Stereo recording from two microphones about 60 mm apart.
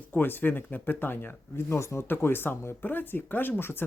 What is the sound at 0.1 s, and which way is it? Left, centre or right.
Speech, left.